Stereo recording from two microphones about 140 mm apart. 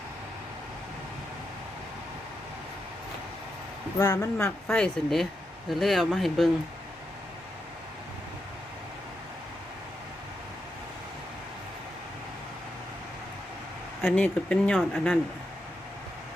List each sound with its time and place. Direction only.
3.9 s speech: 25° left (ahead or behind)
4.7 s speech: 5° left (ahead or behind)
14.0 s speech: 10° left (ahead or behind)